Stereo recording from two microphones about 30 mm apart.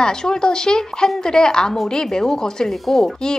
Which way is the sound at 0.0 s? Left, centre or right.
Left.